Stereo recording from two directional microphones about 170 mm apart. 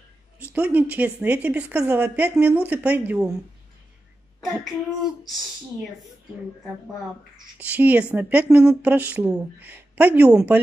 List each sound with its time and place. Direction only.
0.4 s a woman's voice: 10° right (ahead or behind)
7.5 s a woman's voice: 10° right (ahead or behind)